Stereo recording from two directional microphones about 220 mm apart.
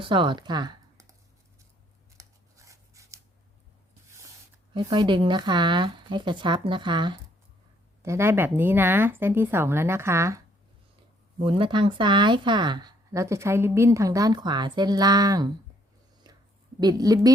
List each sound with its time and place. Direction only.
0.0 s speech: 20° right (ahead or behind)
2.1 s scissors: 15° right (ahead or behind)
4.7 s speech: 20° right (ahead or behind)
11.4 s speech: 25° right (ahead or behind)
16.3 s a sound: 20° right (ahead or behind)
16.8 s speech: 15° right (ahead or behind)